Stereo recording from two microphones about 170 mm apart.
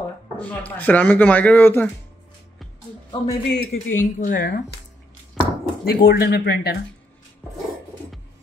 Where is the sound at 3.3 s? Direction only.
65° left (ahead or behind).